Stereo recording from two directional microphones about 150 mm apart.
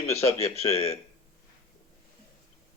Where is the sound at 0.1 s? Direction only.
45° left (ahead or behind).